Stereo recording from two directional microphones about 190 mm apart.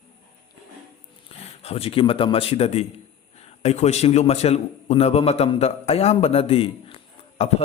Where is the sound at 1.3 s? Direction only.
30° left (ahead or behind).